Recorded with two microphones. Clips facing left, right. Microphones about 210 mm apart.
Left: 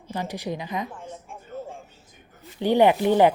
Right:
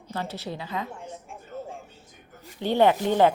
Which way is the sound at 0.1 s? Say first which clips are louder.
Left 3 dB; 15° left (ahead or behind).